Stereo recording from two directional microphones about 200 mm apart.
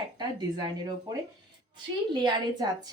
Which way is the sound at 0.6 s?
20° right (ahead or behind).